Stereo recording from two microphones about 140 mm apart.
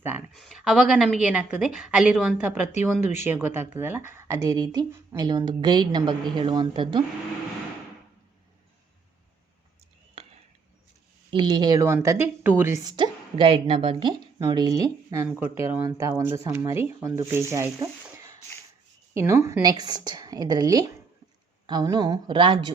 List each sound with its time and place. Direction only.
0.0 s speech: 15° right (ahead or behind)
0.3 s a woman's voice: centre (ahead or behind); by 7.0 s 35° right (ahead or behind)
11.3 s a woman's voice: 35° right (ahead or behind); by 12.8 s 15° right (ahead or behind)
12.8 s a woman's voice: 35° right (ahead or behind)